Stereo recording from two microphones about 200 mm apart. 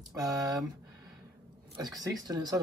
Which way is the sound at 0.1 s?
15° right (ahead or behind).